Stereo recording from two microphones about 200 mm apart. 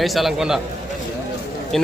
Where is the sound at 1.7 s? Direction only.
Centre (ahead or behind).